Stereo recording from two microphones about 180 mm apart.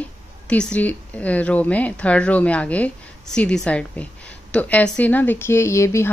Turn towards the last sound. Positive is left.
turn(degrees=15)  # may be behind; listen again after turning